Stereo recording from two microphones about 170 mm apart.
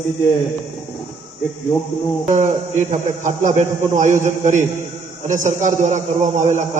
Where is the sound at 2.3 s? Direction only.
45° right (ahead or behind).